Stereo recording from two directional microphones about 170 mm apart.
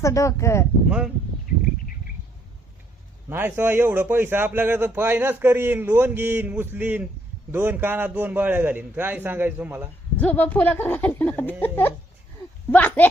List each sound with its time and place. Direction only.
0.0 s speech: 20° left (ahead or behind)
0.9 s speech: 5° right (ahead or behind)
3.2 s a man's voice: 10° right (ahead or behind)
10.2 s speech: 10° left (ahead or behind)